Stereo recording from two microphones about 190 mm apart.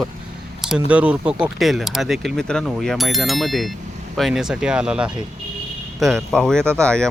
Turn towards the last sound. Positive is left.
turn(degrees=5)  # may be behind; listen again after turning